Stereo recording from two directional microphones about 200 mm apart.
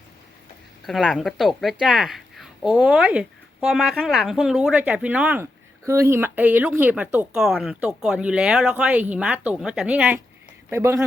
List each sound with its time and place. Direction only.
0.9 s speech: centre (ahead or behind)